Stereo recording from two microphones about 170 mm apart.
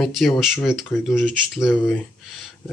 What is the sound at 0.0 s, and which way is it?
Speech, centre (ahead or behind).